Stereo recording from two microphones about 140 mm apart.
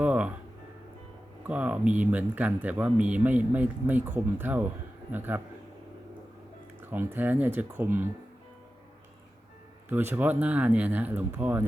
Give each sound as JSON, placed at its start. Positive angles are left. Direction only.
{"t": 0.0, "sound": "music", "side_deg": -10}
{"t": 1.5, "sound": "speech", "side_deg": -10}
{"t": 6.9, "sound": "speech", "side_deg": -15}
{"t": 9.9, "sound": "speech", "side_deg": -15}